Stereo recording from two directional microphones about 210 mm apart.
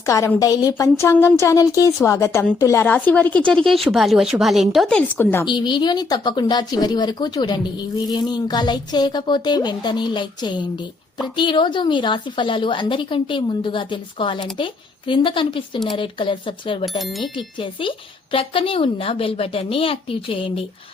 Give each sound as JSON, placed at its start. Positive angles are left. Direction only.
{"t": 0.0, "sound": "a woman's voice", "side_deg": 15}
{"t": 5.5, "sound": "speech", "side_deg": 20}
{"t": 17.0, "sound": "speech", "side_deg": 0}
{"t": 17.3, "sound": "speech", "side_deg": 25}